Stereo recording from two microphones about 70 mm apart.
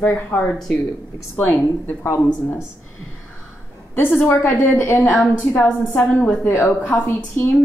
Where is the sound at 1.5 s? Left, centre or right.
Left.